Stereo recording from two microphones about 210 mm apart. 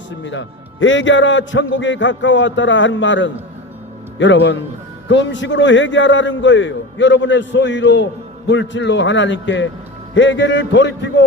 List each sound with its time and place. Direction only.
0.2 s a man's voice: 60° left (ahead or behind)